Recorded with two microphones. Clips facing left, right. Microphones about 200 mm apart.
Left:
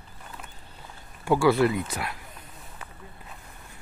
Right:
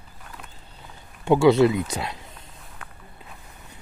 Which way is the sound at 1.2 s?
20° right (ahead or behind).